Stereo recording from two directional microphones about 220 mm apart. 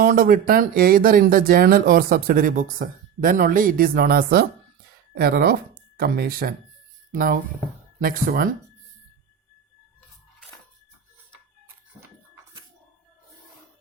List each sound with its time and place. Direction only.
0.0 s speech: 40° right (ahead or behind)